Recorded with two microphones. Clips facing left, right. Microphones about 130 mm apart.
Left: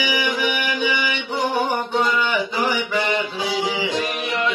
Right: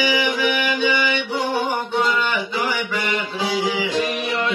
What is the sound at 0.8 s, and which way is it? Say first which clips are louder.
Mantra: right 3 dB; 15° left (ahead or behind).